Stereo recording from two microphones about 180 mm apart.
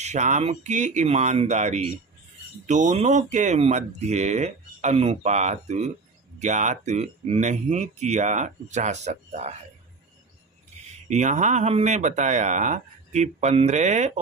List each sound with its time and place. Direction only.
0.0 s speech: 40° right (ahead or behind)
11.1 s speech: 40° right (ahead or behind)